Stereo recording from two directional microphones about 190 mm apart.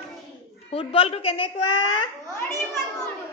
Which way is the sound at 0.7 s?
30° left (ahead or behind).